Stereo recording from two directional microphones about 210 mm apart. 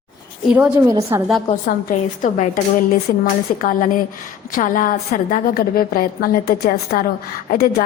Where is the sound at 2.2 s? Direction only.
35° left (ahead or behind).